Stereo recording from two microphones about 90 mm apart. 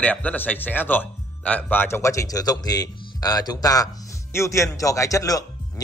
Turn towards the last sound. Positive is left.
turn(degrees=40)  # may be behind; listen again after turning